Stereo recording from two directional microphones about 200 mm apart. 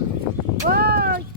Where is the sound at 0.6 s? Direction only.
50° right (ahead or behind).